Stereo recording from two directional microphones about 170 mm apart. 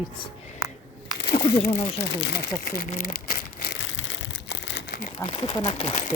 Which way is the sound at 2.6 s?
55° left (ahead or behind).